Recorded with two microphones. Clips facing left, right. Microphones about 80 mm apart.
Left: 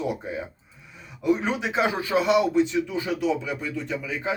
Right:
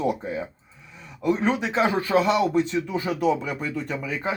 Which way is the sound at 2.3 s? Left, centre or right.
Right.